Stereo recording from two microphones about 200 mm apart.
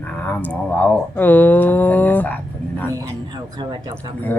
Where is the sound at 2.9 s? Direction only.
20° right (ahead or behind).